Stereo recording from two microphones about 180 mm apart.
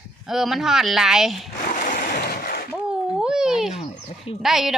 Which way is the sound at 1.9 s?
55° left (ahead or behind).